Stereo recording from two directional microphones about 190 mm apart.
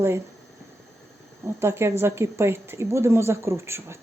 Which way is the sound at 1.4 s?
15° right (ahead or behind).